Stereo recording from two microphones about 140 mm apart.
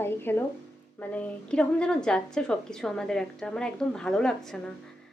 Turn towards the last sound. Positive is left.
turn(degrees=5)  # may be behind; listen again after turning